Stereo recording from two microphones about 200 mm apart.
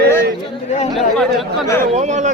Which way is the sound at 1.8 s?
35° right (ahead or behind).